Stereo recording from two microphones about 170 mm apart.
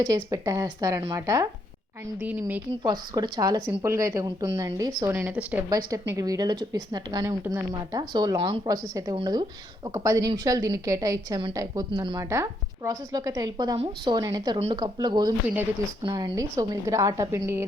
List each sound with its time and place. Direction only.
0.0 s a woman's voice: 20° right (ahead or behind)
2.8 s a woman's voice: 25° right (ahead or behind)
5.1 s a woman's voice: 10° right (ahead or behind)
5.6 s a woman's voice: 20° right (ahead or behind)
12.3 s a woman's voice: 15° right (ahead or behind)